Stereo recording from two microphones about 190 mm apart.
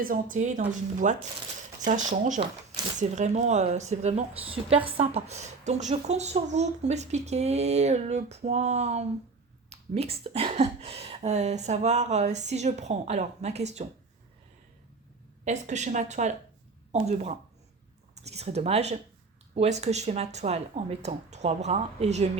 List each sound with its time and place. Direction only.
0.0 s a woman's voice: 45° right (ahead or behind)
15.4 s a woman's voice: 40° right (ahead or behind)